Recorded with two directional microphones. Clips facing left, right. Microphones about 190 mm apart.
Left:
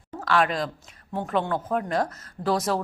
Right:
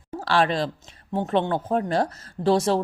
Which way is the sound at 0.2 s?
30° right (ahead or behind).